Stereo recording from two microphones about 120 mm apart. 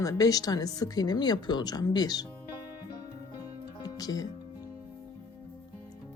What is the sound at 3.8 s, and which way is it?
Music, 30° left (ahead or behind).